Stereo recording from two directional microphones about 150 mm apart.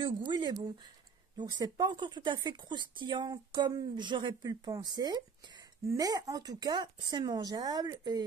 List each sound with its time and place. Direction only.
0.0 s speech: 30° right (ahead or behind)